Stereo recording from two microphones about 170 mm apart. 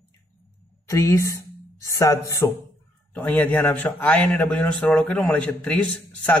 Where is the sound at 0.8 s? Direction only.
15° left (ahead or behind).